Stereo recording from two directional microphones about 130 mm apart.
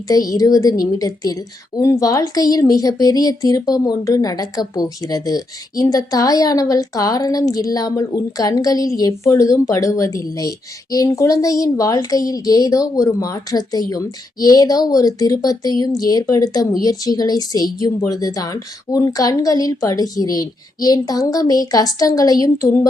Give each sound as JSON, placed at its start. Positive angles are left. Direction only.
{"t": 0.1, "sound": "a woman's voice", "side_deg": 25}